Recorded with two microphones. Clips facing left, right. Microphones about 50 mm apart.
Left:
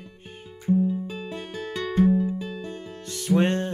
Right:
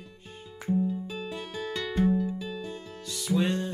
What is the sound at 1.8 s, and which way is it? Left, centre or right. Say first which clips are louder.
Music: left 5 dB; left.